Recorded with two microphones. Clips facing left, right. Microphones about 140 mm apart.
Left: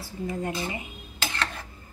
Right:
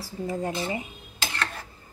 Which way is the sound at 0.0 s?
35° right (ahead or behind).